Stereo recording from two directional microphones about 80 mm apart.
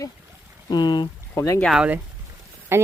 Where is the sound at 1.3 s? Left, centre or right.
Left.